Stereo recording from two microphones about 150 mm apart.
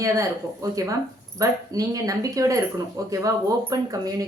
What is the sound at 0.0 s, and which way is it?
A woman's voice, 20° right (ahead or behind).